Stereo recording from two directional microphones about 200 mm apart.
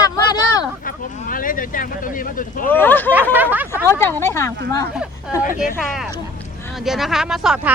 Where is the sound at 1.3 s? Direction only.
45° left (ahead or behind).